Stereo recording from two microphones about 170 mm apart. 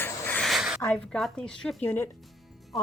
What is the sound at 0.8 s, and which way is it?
A woman's voice, 5° left (ahead or behind).